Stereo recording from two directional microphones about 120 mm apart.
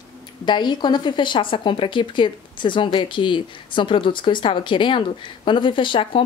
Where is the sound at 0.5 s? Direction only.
40° left (ahead or behind).